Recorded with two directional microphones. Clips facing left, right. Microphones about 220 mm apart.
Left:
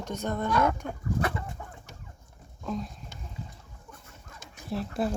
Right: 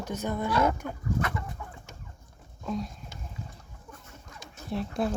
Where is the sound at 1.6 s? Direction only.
35° left (ahead or behind).